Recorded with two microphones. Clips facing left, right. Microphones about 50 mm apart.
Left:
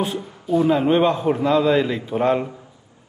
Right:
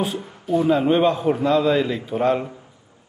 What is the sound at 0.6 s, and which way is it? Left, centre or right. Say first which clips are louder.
A man's voice: left 1 dB; centre.